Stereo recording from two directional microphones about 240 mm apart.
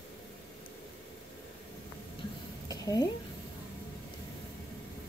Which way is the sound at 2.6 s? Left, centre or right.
Centre.